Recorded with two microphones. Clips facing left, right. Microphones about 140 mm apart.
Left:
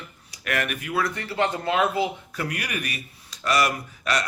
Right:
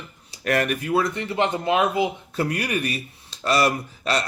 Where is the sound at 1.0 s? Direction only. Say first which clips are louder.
Right 2 dB; 20° right (ahead or behind).